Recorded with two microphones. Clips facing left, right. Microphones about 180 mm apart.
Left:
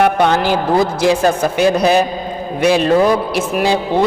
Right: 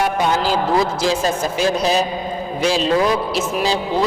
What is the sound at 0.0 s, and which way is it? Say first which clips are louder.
A man's voice: left 5 dB; 65° left (ahead or behind).